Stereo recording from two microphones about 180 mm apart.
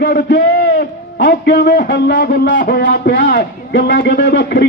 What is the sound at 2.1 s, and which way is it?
A man's voice, 60° left (ahead or behind).